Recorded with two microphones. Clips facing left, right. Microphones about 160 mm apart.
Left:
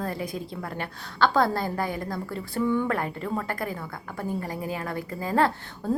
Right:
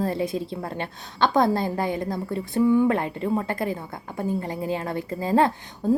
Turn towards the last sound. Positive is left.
turn(degrees=-20)  # may be behind; listen again after turning